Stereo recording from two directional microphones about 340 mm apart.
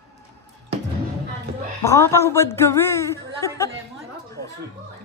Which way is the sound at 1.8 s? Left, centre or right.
Centre.